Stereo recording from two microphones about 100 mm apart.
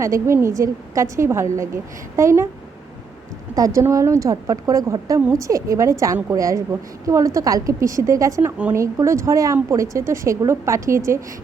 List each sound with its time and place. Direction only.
0.0 s speech: 30° right (ahead or behind)
3.5 s a woman's voice: 35° right (ahead or behind)